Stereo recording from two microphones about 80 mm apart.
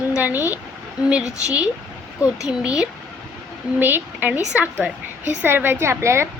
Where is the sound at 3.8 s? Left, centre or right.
Right.